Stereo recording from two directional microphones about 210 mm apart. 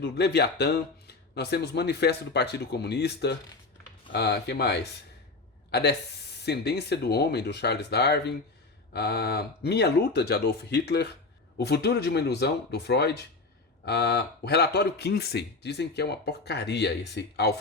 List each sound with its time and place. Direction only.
0.0 s speech: 50° left (ahead or behind)